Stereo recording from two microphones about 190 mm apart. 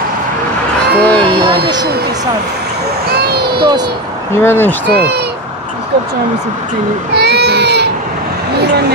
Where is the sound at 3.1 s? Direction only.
55° right (ahead or behind).